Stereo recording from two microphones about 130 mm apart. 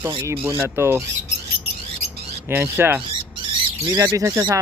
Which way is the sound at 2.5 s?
20° right (ahead or behind).